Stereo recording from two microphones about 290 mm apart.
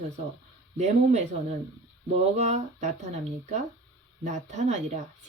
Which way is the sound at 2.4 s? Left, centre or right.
Right.